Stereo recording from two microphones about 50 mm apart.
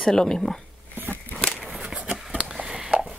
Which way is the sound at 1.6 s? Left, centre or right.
Centre.